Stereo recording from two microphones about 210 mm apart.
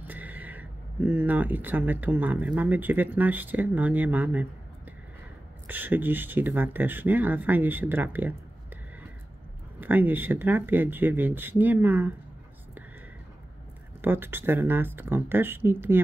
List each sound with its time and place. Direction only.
0.0 s speech: 10° right (ahead or behind)
5.7 s speech: 10° right (ahead or behind)
9.8 s speech: 10° right (ahead or behind)
14.0 s speech: 10° right (ahead or behind)